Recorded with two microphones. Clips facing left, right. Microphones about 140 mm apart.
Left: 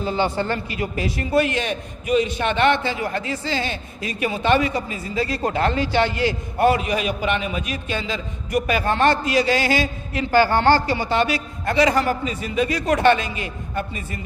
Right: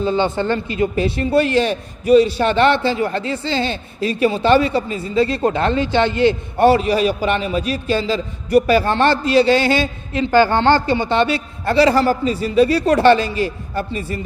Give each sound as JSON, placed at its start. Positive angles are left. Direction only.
{"t": 0.0, "sound": "a man's voice", "side_deg": -25}